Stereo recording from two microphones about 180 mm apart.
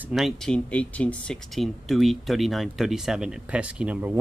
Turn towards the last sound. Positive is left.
turn(degrees=-10)  # may be behind; listen again after turning